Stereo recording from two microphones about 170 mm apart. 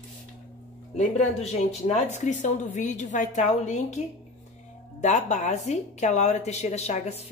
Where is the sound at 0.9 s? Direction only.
40° left (ahead or behind).